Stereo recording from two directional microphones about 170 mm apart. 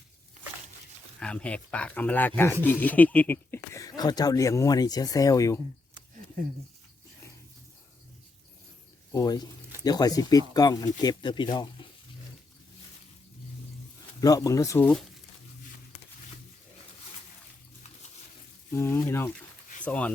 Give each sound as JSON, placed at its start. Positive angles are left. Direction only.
{"t": 1.2, "sound": "speech", "side_deg": 5}
{"t": 9.1, "sound": "speech", "side_deg": 20}
{"t": 14.2, "sound": "speech", "side_deg": 20}
{"t": 18.7, "sound": "speech", "side_deg": 15}